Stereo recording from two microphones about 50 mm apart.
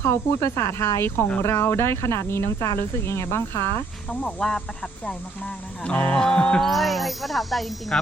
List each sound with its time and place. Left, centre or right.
0.0 s speech: left
1.0 s speech: left
2.7 s speech: left
4.1 s speech: left
4.4 s music: centre
6.1 s music: centre
6.7 s speech: centre